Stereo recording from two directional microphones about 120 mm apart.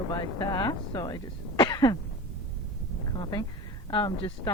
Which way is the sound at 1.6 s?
35° left (ahead or behind).